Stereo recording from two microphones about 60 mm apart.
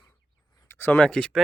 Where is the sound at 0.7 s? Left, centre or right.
Left.